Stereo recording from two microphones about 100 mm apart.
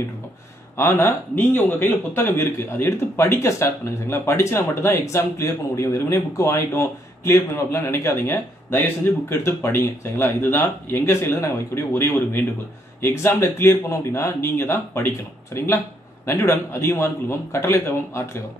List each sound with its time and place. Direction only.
0.7 s speech: 25° left (ahead or behind)